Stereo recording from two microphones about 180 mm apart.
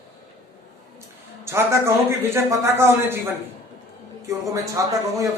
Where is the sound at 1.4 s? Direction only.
15° right (ahead or behind).